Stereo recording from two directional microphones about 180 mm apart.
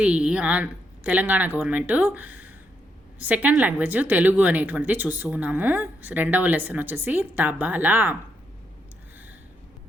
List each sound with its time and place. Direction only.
0.0 s speech: 5° right (ahead or behind)